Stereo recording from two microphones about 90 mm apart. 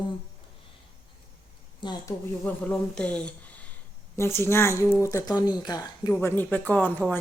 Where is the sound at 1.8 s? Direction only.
60° left (ahead or behind).